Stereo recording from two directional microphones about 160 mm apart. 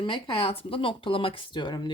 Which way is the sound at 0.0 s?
35° left (ahead or behind).